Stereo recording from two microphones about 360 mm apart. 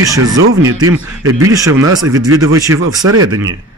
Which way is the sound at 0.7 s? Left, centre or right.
Right.